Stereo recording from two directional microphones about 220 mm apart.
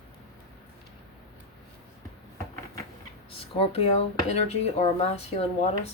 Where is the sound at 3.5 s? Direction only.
25° left (ahead or behind).